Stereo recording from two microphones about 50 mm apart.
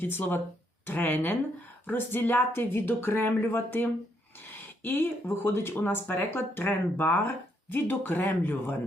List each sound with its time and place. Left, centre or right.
0.0 s speech: left
4.5 s a sound: left
5.3 s speech: left